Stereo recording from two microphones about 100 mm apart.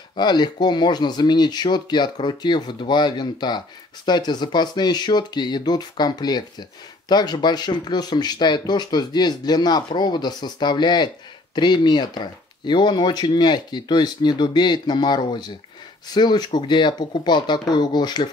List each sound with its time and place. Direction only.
0.1 s speech: 45° left (ahead or behind)